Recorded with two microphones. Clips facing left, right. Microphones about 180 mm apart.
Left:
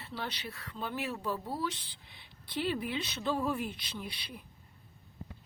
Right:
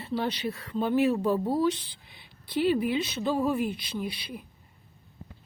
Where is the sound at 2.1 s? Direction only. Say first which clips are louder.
Right 7 dB; 10° right (ahead or behind).